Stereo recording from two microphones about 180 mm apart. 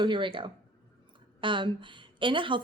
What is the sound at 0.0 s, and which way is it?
A woman's voice, 25° right (ahead or behind).